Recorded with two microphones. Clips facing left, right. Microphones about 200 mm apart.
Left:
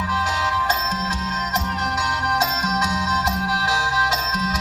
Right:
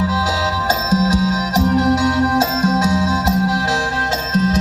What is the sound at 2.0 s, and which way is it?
Music, 30° right (ahead or behind).